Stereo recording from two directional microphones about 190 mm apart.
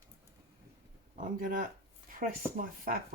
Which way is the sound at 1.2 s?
45° right (ahead or behind).